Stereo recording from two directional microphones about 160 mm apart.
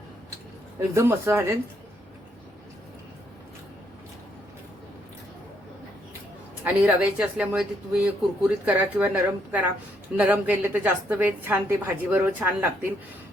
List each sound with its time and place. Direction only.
0.9 s a woman's voice: 15° right (ahead or behind)
6.8 s a woman's voice: 5° right (ahead or behind)